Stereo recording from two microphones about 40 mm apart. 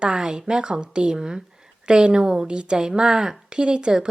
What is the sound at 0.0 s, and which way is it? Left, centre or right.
A woman's voice, centre.